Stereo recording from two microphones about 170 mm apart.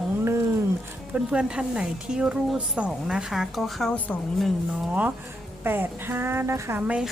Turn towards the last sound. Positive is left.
turn(degrees=-5)  # may be behind; listen again after turning